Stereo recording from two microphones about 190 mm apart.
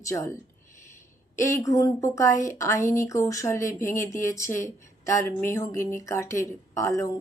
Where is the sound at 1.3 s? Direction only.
15° left (ahead or behind).